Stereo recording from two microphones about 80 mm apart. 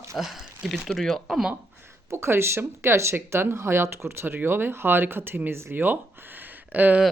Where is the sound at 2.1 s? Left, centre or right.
Right.